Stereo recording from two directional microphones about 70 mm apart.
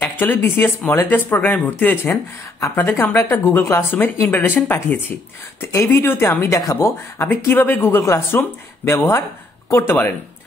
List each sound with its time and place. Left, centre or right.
0.0 s speech: left
7.2 s speech: left